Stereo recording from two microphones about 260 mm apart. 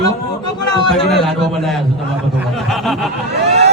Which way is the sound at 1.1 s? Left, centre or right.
Centre.